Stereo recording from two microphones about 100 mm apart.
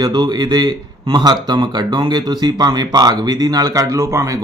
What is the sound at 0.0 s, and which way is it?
A man's voice, 45° right (ahead or behind).